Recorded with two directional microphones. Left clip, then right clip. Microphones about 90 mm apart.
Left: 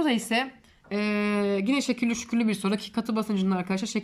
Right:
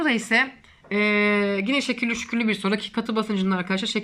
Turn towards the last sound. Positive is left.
turn(degrees=35)  # may be behind; listen again after turning